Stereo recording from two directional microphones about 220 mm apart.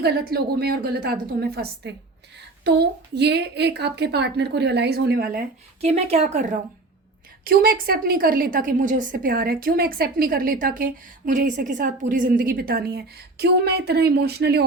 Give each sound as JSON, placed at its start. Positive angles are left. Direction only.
{"t": 0.0, "sound": "a woman's voice", "side_deg": -45}
{"t": 5.8, "sound": "speech", "side_deg": -30}
{"t": 7.4, "sound": "a woman's voice", "side_deg": -45}